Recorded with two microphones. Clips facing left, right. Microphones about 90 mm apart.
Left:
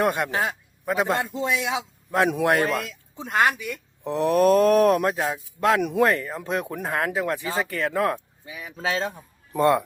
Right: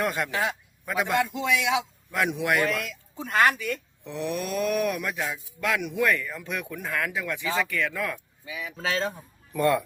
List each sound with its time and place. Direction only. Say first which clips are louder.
0.0 s speech: left 5 dB; 25° left (ahead or behind)
0.3 s a man's voice: left 2 dB; 50° left (ahead or behind)
0.9 s speech: left 2 dB; 30° left (ahead or behind)
4.0 s speech: left 13 dB; 40° left (ahead or behind)
8.8 s speech: left 2 dB; 25° left (ahead or behind)